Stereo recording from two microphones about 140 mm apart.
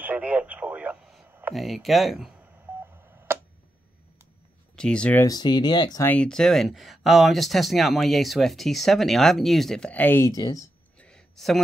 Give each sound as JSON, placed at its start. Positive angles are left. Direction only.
{"t": 0.0, "sound": "radio", "side_deg": -10}
{"t": 1.5, "sound": "speech", "side_deg": 0}
{"t": 2.7, "sound": "telephone dialing", "side_deg": -20}
{"t": 4.7, "sound": "speech", "side_deg": 5}
{"t": 5.2, "sound": "speech", "side_deg": 30}
{"t": 6.0, "sound": "speech", "side_deg": 10}
{"t": 11.0, "sound": "a sound", "side_deg": 5}